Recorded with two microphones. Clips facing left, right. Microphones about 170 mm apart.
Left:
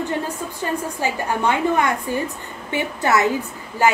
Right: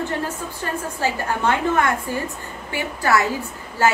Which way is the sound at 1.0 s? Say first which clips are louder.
Even; 15° left (ahead or behind).